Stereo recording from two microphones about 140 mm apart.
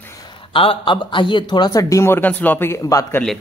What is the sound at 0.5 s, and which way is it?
Speech, 40° left (ahead or behind).